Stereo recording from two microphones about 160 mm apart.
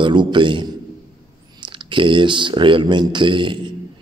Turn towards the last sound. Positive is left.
turn(degrees=-30)  # may be behind; listen again after turning